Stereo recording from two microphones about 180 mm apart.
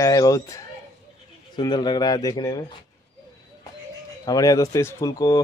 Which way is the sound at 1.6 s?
25° left (ahead or behind).